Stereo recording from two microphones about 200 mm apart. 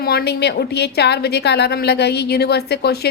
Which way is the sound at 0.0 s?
50° left (ahead or behind).